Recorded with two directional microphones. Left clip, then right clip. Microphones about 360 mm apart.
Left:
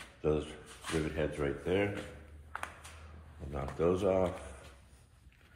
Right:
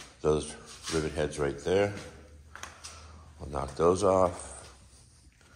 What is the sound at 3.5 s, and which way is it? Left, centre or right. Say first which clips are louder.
Speech: right 6 dB; centre.